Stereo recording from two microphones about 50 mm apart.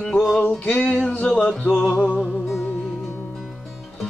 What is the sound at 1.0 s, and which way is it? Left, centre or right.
Music, centre.